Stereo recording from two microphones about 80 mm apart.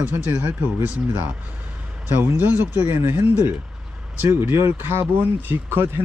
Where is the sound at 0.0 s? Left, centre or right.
Right.